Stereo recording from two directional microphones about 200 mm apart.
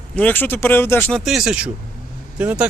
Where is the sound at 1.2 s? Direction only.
Centre (ahead or behind).